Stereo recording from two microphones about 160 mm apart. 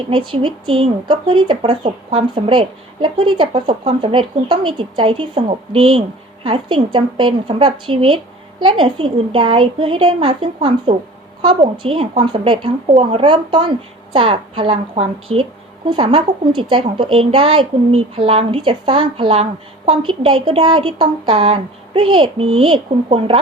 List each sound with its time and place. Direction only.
0.1 s speech: 30° right (ahead or behind)